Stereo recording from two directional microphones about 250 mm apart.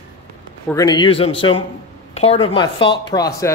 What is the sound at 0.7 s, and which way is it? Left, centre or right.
Speech, centre.